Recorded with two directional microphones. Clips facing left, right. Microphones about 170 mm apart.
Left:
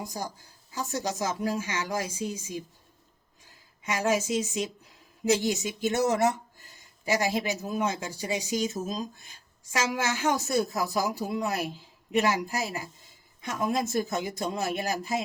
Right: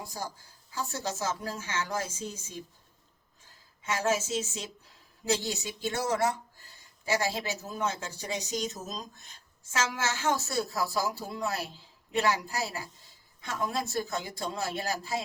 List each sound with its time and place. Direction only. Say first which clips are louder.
0.1 s speech: left 3 dB; 15° left (ahead or behind)
3.8 s speech: left 3 dB; 15° left (ahead or behind)